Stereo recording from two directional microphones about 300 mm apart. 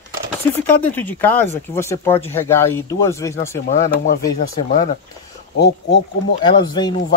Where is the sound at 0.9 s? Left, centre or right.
Centre.